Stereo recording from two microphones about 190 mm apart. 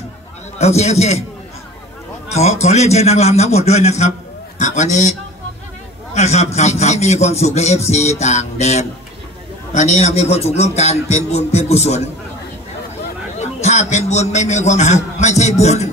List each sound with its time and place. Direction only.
0.6 s a man's voice: 35° left (ahead or behind)
2.3 s a man's voice: 35° left (ahead or behind)
6.1 s a man's voice: 35° left (ahead or behind)
13.4 s a man's voice: 35° left (ahead or behind)